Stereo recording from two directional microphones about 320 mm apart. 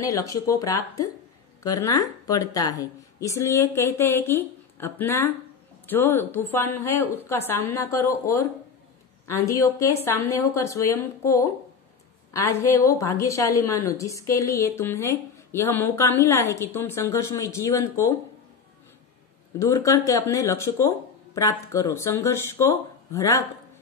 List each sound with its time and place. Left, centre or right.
0.0 s a woman's voice: centre
9.5 s a woman's voice: centre
19.6 s a woman's voice: centre